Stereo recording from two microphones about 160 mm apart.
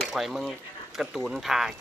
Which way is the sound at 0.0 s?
Centre (ahead or behind).